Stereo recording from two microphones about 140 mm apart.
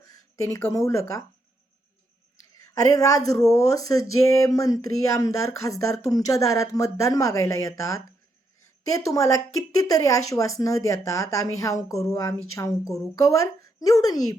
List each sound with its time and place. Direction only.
0.0 s speech: 20° left (ahead or behind)
2.7 s speech: 25° left (ahead or behind)